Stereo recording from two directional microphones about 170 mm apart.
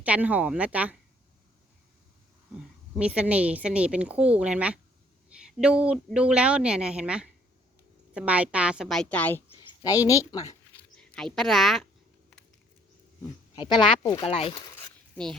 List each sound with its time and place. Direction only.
0.0 s speech: 10° right (ahead or behind)
2.9 s speech: 5° right (ahead or behind); by 9.4 s 10° left (ahead or behind)
9.6 s a woman's voice: 20° left (ahead or behind)
10.9 s a woman's voice: 5° left (ahead or behind)
13.6 s speech: 25° left (ahead or behind)